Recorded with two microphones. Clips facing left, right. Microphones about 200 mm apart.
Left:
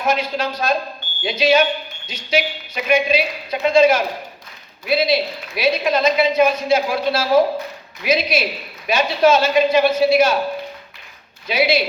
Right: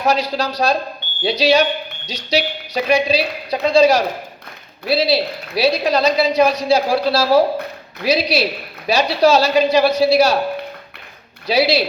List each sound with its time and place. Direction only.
0.1 s a woman's voice: 35° right (ahead or behind)
11.4 s a woman's voice: 35° right (ahead or behind)